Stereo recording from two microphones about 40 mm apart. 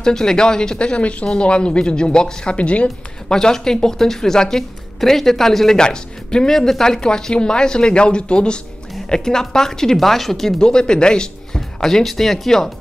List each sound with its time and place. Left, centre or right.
0.0 s speech: centre; by 2.9 s left
3.3 s a woman's voice: centre
5.8 s a woman's voice: centre
10.6 s a man's voice: centre